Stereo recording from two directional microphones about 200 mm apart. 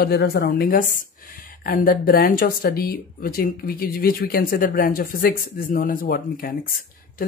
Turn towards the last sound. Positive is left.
turn(degrees=45)  # may be behind; listen again after turning